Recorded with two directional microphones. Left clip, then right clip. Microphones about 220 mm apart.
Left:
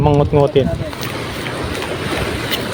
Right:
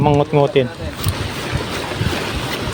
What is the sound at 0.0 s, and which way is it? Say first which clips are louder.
Speech: left 1 dB; 10° right (ahead or behind).